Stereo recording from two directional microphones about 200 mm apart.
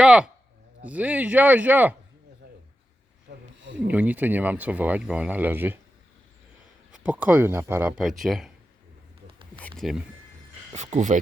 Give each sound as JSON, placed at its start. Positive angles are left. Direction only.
{"t": 0.0, "sound": "a sound", "side_deg": -5}
{"t": 0.9, "sound": "speech", "side_deg": -5}
{"t": 3.3, "sound": "a sound", "side_deg": -55}
{"t": 3.8, "sound": "speech", "side_deg": -10}
{"t": 6.9, "sound": "speech", "side_deg": -5}
{"t": 9.6, "sound": "speech", "side_deg": 5}
{"t": 10.7, "sound": "speech", "side_deg": -35}